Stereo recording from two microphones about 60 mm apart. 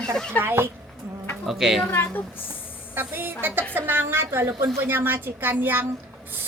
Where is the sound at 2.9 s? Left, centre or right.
Right.